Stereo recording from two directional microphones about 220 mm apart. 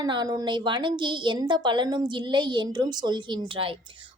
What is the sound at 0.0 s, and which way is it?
A woman's voice, 20° right (ahead or behind).